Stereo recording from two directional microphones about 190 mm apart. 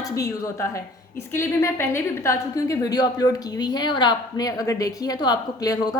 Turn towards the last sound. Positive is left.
turn(degrees=20)  # may be behind; listen again after turning